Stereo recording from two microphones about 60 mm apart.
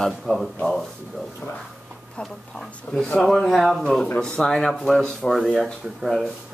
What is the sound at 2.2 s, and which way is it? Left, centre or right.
Speech, centre.